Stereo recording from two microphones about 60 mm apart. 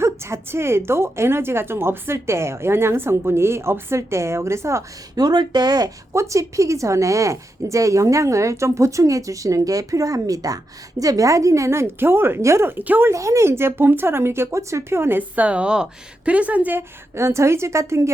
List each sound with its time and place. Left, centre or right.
0.0 s a woman's voice: right
5.2 s speech: right
6.1 s a woman's voice: right
11.9 s a woman's voice: right
12.4 s a woman's voice: right
12.6 s a woman's voice: right
13.1 s a woman's voice: right
15.2 s speech: right
17.2 s a woman's voice: right